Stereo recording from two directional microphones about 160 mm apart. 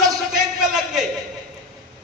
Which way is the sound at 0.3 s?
5° right (ahead or behind).